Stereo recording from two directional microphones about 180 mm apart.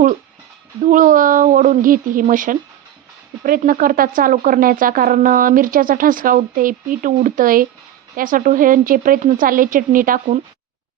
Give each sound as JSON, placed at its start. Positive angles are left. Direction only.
{"t": 0.9, "sound": "speech", "side_deg": -45}